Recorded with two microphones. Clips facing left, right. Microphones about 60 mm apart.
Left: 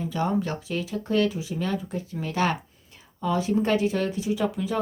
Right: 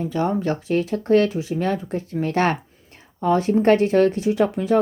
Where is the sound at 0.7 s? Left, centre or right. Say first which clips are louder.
Right 11 dB; right.